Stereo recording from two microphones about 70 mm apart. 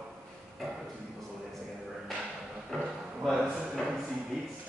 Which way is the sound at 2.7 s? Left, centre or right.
Centre.